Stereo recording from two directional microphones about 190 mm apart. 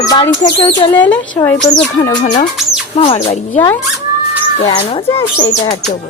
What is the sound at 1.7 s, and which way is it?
Speech, 20° left (ahead or behind).